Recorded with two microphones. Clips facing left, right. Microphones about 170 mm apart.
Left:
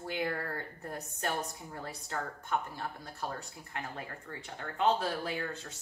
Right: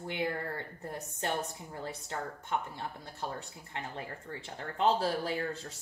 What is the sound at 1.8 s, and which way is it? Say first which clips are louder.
Speech: even; 25° right (ahead or behind).